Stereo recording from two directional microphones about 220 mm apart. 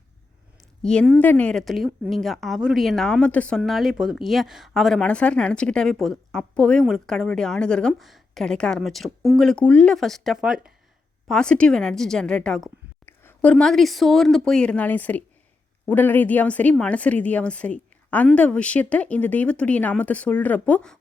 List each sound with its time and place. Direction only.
0.8 s speech: 5° left (ahead or behind)